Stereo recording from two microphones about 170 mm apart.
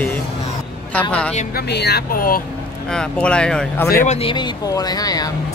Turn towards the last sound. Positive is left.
turn(degrees=20)  # may be behind; listen again after turning